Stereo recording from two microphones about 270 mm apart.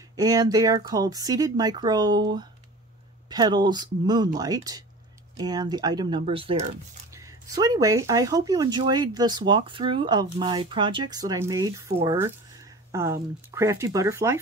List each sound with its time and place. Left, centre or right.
0.1 s speech: centre